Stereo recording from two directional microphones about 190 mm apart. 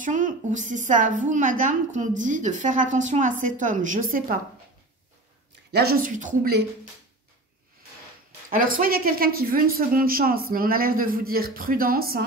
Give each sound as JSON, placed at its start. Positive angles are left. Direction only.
{"t": 0.0, "sound": "a woman's voice", "side_deg": -45}
{"t": 5.7, "sound": "speech", "side_deg": -55}
{"t": 8.5, "sound": "speech", "side_deg": -45}